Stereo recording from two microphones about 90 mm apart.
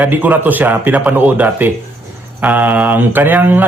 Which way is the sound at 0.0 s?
20° right (ahead or behind).